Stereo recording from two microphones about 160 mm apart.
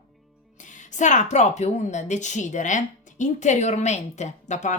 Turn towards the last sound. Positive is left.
turn(degrees=50)  # may be behind; listen again after turning